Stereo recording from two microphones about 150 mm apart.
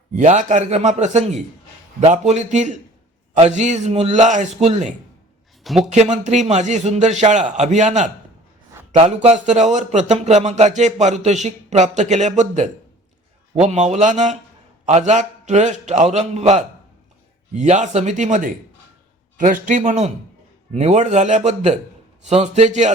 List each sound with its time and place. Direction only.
0.2 s speech: 50° right (ahead or behind)
5.6 s speech: centre (ahead or behind)
5.9 s a man's voice: 50° right (ahead or behind)